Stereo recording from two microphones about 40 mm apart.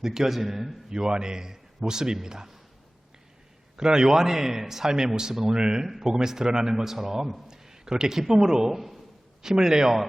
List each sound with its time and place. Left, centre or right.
0.0 s a man's voice: centre
3.8 s a man's voice: centre
9.4 s a man's voice: centre